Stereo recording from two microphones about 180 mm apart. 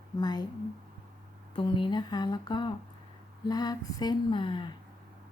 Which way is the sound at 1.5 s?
30° left (ahead or behind).